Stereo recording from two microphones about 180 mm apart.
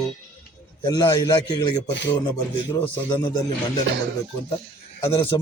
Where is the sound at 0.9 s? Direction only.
20° left (ahead or behind).